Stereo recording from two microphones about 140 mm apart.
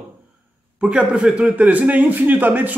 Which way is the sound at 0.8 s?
5° right (ahead or behind).